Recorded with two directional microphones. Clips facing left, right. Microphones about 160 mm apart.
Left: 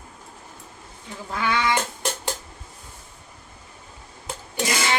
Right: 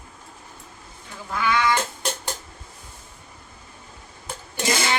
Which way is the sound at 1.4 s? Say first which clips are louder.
Right 2 dB; 25° left (ahead or behind).